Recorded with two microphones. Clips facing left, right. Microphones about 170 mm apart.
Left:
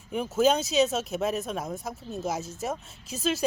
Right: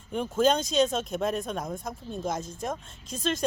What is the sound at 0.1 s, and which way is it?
Speech, 5° left (ahead or behind).